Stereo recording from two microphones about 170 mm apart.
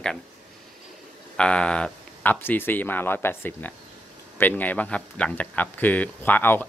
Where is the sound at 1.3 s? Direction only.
5° left (ahead or behind).